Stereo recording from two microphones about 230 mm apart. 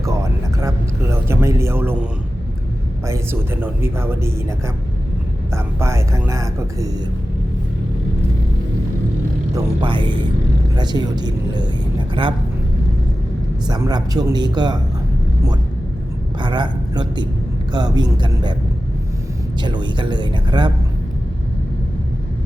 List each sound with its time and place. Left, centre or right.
0.0 s a sound: centre
3.1 s speech: centre
9.6 s speech: right
13.7 s speech: centre
16.4 s a woman's voice: centre
19.6 s speech: centre